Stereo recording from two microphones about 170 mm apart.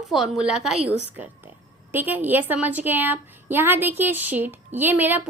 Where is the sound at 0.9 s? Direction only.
90° right.